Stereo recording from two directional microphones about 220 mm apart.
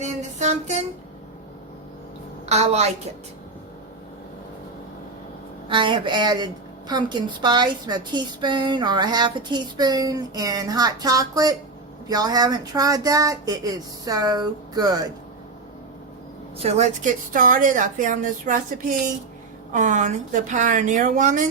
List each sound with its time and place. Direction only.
0.0 s music: 30° right (ahead or behind)
2.5 s a woman's voice: 30° right (ahead or behind)
5.6 s a woman's voice: 20° right (ahead or behind)
16.6 s speech: 30° right (ahead or behind)